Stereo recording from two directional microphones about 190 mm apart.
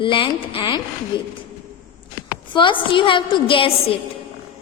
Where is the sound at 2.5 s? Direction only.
25° left (ahead or behind).